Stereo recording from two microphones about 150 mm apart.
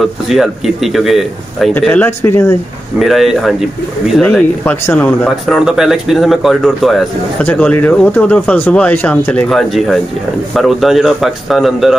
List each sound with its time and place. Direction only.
0.0 s a man's voice: centre (ahead or behind)
1.7 s speech: 15° left (ahead or behind)
3.0 s a man's voice: centre (ahead or behind)